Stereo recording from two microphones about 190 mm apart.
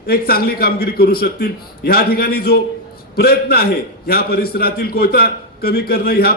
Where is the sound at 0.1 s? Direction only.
55° left (ahead or behind).